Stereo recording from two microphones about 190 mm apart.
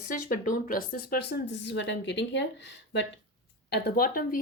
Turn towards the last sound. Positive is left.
turn(degrees=50)  # may be behind; listen again after turning